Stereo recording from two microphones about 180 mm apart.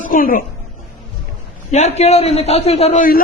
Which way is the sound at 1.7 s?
35° left (ahead or behind).